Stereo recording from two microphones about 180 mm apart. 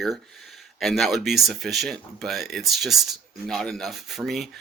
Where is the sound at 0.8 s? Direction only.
Centre (ahead or behind).